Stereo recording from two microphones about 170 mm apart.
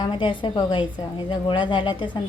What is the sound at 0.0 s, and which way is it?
A woman's voice, 30° left (ahead or behind).